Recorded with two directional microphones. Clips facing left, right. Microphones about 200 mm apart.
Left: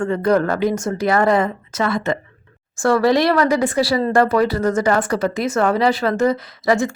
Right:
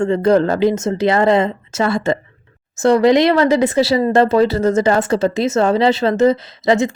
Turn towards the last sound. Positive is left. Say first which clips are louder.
# right 3 dB
turn(degrees=-20)  # may be behind; listen again after turning